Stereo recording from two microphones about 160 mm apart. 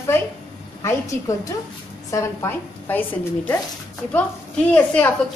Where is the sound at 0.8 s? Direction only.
20° left (ahead or behind).